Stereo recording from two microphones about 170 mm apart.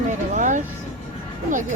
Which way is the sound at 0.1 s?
45° right (ahead or behind).